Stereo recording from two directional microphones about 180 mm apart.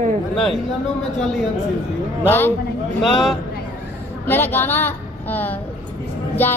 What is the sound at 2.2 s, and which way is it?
Speech, 10° left (ahead or behind).